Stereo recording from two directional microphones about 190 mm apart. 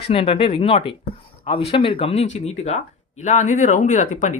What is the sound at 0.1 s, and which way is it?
Speech, 30° left (ahead or behind).